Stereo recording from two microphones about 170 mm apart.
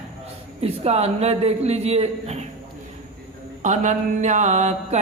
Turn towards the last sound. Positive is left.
turn(degrees=-40)  # may be behind; listen again after turning